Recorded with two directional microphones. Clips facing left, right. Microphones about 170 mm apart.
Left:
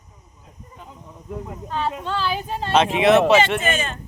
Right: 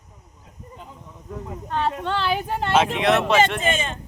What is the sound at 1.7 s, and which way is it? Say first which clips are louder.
A woman's voice: right 1 dB; 60° right (ahead or behind).